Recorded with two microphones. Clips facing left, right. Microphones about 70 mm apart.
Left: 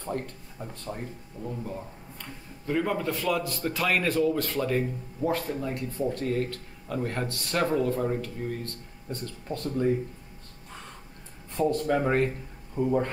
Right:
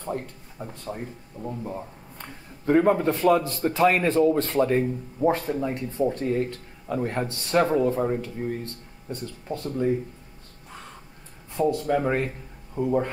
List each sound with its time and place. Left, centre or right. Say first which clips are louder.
0.0 s speech: right 2 dB; centre
1.4 s speech: right 3 dB; right
2.6 s a man's voice: right 8 dB; right; by 9.8 s centre
11.6 s speech: right 2 dB; centre